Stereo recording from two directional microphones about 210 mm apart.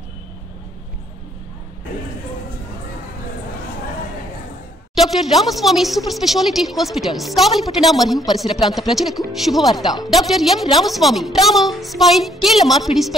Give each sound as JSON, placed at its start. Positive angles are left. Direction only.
{"t": 4.9, "sound": "a woman's voice", "side_deg": 0}